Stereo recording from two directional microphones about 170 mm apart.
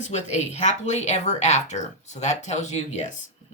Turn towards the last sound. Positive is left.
turn(degrees=45)  # may be behind; listen again after turning